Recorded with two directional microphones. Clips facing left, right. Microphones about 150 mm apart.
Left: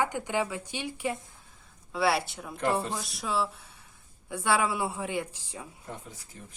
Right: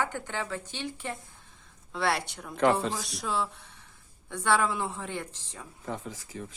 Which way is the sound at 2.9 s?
Centre (ahead or behind).